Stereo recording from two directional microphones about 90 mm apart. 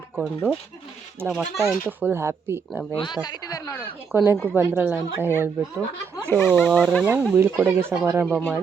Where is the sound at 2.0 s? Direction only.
25° right (ahead or behind).